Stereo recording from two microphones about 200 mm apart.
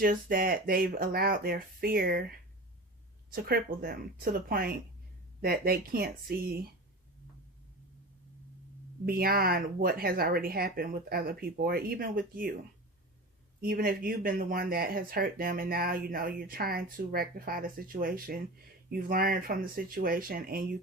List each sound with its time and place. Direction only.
0.0 s speech: 45° right (ahead or behind)
3.3 s speech: 50° right (ahead or behind)
9.0 s speech: 50° right (ahead or behind)
13.6 s speech: 45° right (ahead or behind)